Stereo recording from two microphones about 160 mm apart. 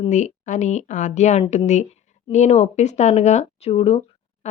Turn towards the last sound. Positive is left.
turn(degrees=40)  # may be behind; listen again after turning